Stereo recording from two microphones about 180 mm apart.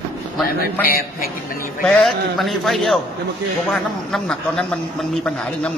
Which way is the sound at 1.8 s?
Centre (ahead or behind).